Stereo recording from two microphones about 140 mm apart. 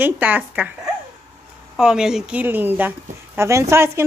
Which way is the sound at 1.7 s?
5° right (ahead or behind).